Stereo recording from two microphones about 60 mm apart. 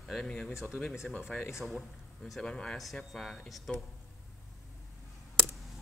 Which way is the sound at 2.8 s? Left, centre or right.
Centre.